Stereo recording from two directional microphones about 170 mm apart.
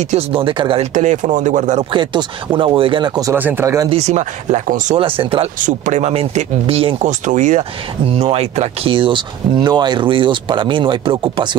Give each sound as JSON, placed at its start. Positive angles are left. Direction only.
{"t": 0.0, "sound": "speech", "side_deg": -35}
{"t": 0.9, "sound": "speech", "side_deg": -45}
{"t": 1.9, "sound": "speech", "side_deg": -30}
{"t": 3.3, "sound": "speech", "side_deg": -10}
{"t": 3.9, "sound": "speech", "side_deg": -40}
{"t": 4.9, "sound": "speech", "side_deg": -30}
{"t": 5.6, "sound": "speech", "side_deg": -45}
{"t": 7.1, "sound": "speech", "side_deg": -45}